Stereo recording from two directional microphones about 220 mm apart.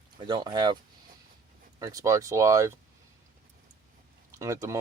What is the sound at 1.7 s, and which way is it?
Speech, 15° right (ahead or behind).